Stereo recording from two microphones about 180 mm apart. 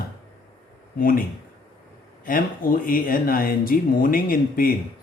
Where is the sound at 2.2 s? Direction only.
50° left (ahead or behind).